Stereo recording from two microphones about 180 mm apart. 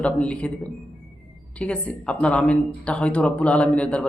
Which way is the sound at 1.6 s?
5° left (ahead or behind).